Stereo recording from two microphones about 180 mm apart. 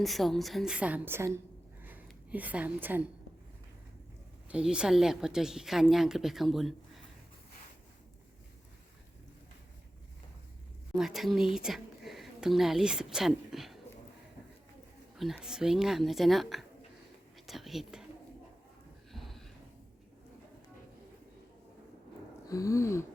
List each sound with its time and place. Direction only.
0.0 s a woman's voice: centre (ahead or behind)
1.8 s a sound: 10° right (ahead or behind)
4.4 s a woman's voice: 5° right (ahead or behind)
10.9 s a woman's voice: centre (ahead or behind)
15.1 s a woman's voice: centre (ahead or behind)
17.3 s whispering: centre (ahead or behind)
19.1 s snort: centre (ahead or behind)
22.4 s a sound: 20° left (ahead or behind)